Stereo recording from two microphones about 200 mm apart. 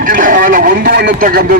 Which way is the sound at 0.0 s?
45° right (ahead or behind).